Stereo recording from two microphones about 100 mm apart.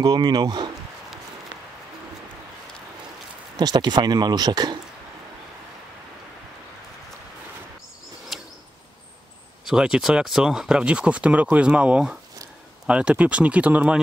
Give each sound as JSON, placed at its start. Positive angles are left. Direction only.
{"t": 0.0, "sound": "speech", "side_deg": -45}
{"t": 3.5, "sound": "speech", "side_deg": -45}
{"t": 9.7, "sound": "speech", "side_deg": -5}